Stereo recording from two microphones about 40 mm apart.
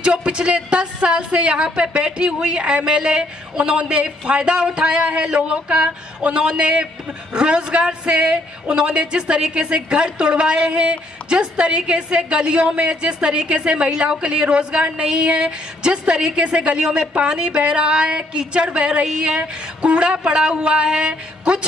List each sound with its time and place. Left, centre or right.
0.0 s a woman's voice: right